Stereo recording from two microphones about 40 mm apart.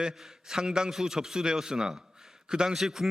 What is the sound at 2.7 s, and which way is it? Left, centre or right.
Speech, centre.